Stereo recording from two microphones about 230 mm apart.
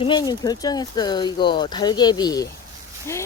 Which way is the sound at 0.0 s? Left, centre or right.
Centre.